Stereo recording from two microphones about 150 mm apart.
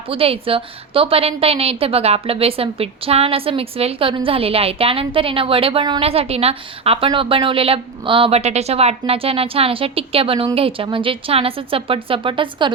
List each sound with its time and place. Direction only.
0.1 s a woman's voice: 40° right (ahead or behind)